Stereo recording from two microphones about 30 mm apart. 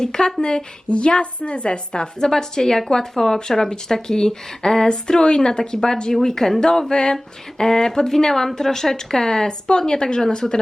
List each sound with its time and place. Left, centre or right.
0.0 s a woman's voice: left
0.9 s a woman's voice: left; by 4.9 s centre
4.9 s a woman's voice: left